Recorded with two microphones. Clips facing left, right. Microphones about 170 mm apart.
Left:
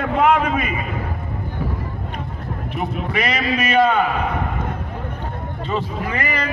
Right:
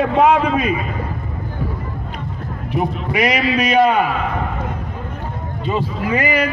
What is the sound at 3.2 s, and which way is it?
Speech, 10° right (ahead or behind).